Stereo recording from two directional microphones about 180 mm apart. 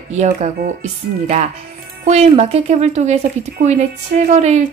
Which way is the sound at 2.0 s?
35° right (ahead or behind).